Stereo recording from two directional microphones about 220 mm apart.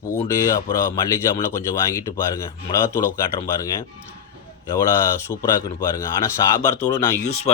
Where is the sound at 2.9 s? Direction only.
10° left (ahead or behind).